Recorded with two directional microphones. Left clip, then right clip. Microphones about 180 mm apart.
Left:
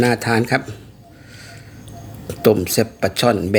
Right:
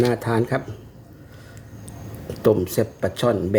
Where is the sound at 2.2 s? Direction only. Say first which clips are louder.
Left 4 dB; 15° left (ahead or behind).